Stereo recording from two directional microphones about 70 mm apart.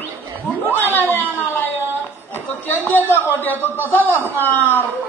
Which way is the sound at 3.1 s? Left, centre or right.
Left.